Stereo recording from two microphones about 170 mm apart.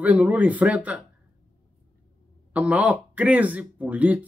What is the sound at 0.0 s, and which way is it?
Speech, 10° right (ahead or behind).